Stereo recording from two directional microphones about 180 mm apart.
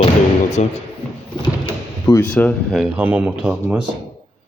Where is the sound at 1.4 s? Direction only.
25° left (ahead or behind).